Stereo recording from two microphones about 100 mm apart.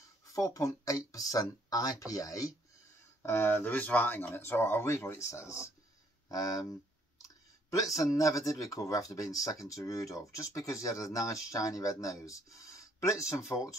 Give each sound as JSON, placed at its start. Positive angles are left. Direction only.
{"t": 0.3, "sound": "speech", "side_deg": 35}
{"t": 3.2, "sound": "speech", "side_deg": 25}
{"t": 7.7, "sound": "speech", "side_deg": 35}